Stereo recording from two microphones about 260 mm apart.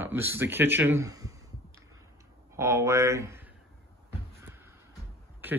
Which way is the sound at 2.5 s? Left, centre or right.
Centre.